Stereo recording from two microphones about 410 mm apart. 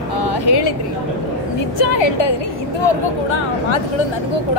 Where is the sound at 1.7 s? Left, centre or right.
Left.